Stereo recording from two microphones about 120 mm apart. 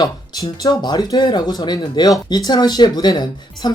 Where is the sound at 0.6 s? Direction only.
35° left (ahead or behind).